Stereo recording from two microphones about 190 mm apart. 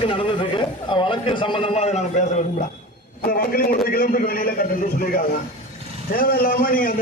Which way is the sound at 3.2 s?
50° left (ahead or behind).